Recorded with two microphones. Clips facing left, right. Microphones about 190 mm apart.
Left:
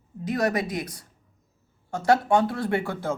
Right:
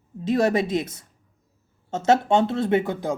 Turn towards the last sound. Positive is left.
turn(degrees=-20)  # may be behind; listen again after turning